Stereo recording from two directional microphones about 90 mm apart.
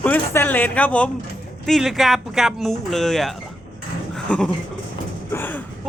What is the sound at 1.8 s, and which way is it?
Speech, centre (ahead or behind).